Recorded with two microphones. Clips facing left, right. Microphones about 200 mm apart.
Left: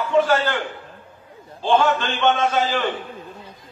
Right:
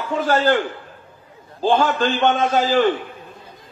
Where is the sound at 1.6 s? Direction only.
35° right (ahead or behind).